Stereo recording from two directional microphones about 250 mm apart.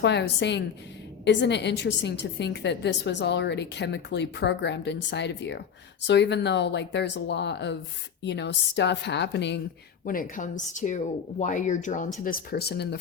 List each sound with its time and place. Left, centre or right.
0.0 s a woman's voice: left
10.1 s speech: left